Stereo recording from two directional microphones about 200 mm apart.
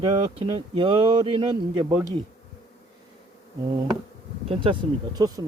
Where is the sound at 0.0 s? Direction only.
25° right (ahead or behind).